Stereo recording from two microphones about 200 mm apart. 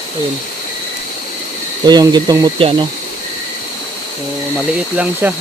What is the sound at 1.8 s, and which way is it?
Speech, 20° right (ahead or behind).